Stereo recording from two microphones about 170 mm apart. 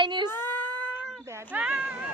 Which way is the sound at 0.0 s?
30° right (ahead or behind).